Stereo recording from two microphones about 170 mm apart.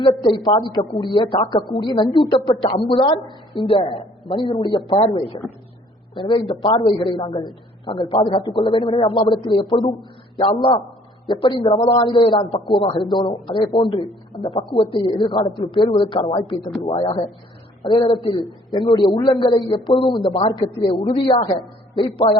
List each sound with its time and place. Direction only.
0.2 s speech: 25° left (ahead or behind)